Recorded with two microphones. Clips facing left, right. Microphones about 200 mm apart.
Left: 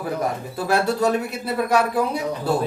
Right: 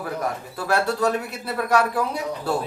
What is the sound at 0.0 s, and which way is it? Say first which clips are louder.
Speech: left 3 dB; 20° left (ahead or behind).